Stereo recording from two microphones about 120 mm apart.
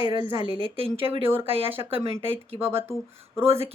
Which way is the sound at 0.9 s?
50° right (ahead or behind).